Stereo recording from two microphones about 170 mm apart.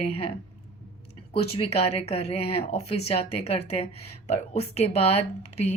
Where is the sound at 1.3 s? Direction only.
35° left (ahead or behind).